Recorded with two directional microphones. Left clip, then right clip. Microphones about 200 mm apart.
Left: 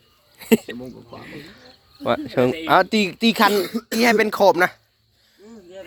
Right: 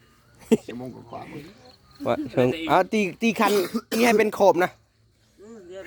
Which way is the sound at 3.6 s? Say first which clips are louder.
Left 2 dB; 40° right (ahead or behind).